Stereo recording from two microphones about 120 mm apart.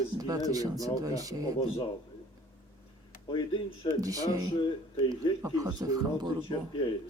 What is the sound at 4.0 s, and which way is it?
Speech, 30° right (ahead or behind).